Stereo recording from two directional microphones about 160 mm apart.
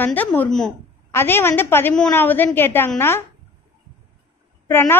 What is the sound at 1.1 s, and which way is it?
A woman's voice, 15° left (ahead or behind).